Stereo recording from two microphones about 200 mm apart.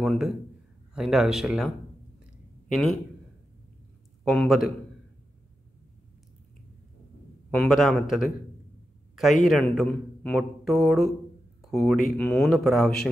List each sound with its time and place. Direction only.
0.0 s speech: centre (ahead or behind)
2.7 s speech: centre (ahead or behind)
4.2 s speech: centre (ahead or behind)
7.5 s speech: centre (ahead or behind)